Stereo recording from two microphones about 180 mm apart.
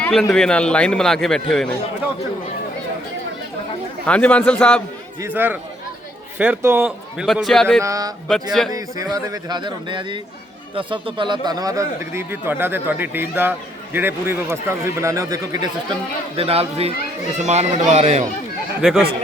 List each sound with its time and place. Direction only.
0.0 s a man's voice: 5° left (ahead or behind)
4.0 s a man's voice: 5° left (ahead or behind)
5.2 s a man's voice: 10° right (ahead or behind)
7.8 s a man's voice: 20° right (ahead or behind)
16.4 s speech: 35° right (ahead or behind)
18.8 s a man's voice: centre (ahead or behind)